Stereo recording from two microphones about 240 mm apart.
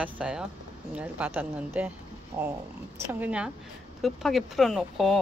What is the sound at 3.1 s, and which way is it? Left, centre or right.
A woman's voice, centre.